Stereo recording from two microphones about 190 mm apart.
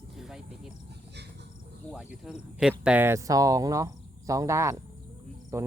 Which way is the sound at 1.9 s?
5° right (ahead or behind).